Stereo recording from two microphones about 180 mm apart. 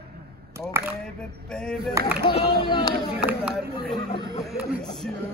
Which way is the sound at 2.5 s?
25° left (ahead or behind).